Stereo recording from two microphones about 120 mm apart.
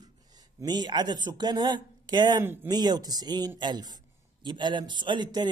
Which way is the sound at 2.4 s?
20° right (ahead or behind).